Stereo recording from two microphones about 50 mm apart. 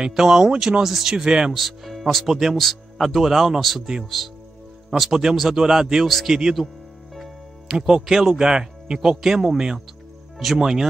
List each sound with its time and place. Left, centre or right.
0.1 s a man's voice: centre
0.8 s speech: centre
1.1 s a man's voice: centre
1.5 s a man's voice: centre
6.0 s speech: centre
7.7 s a man's voice: centre